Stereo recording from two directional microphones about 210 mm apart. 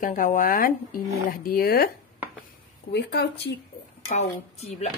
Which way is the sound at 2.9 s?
55° left (ahead or behind).